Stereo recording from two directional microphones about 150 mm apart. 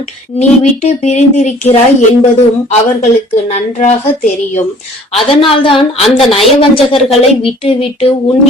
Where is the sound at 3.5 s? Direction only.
50° left (ahead or behind).